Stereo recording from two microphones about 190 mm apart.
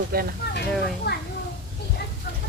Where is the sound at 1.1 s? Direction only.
55° left (ahead or behind).